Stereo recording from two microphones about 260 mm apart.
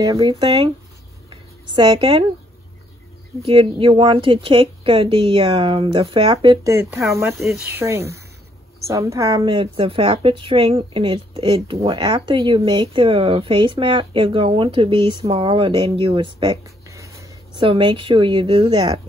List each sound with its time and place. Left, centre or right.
0.0 s speech: centre
1.3 s a sound: centre
3.4 s speech: centre